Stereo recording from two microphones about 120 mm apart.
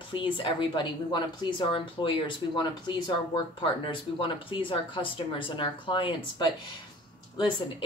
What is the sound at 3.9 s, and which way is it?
Speech, 45° left (ahead or behind).